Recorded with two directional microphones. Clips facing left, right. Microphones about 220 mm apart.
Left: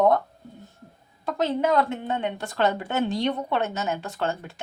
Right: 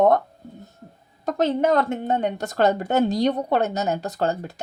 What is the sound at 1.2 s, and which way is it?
A woman's voice, 45° right (ahead or behind).